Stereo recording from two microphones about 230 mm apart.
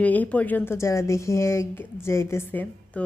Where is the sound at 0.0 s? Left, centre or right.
Centre.